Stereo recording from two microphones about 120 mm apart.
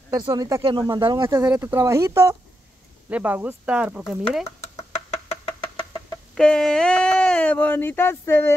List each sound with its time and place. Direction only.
0.1 s speech: 30° right (ahead or behind)
0.6 s speech: 45° right (ahead or behind)
1.5 s speech: 20° right (ahead or behind)
3.1 s speech: 15° right (ahead or behind)
4.5 s a sound: 60° left (ahead or behind)
6.3 s speech: 5° left (ahead or behind)